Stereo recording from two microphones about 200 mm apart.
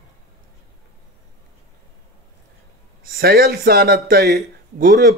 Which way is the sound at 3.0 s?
50° right (ahead or behind).